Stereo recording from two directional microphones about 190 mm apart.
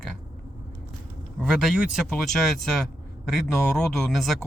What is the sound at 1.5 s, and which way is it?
Speech, centre (ahead or behind).